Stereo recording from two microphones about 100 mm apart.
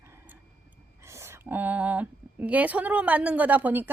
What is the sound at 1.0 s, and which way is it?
A woman's voice, 30° right (ahead or behind).